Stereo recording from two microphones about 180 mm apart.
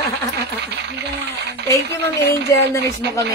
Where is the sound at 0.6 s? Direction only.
70° right (ahead or behind).